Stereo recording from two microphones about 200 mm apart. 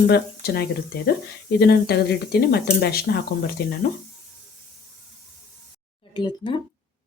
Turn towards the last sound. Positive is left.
turn(degrees=25)  # may be behind; listen again after turning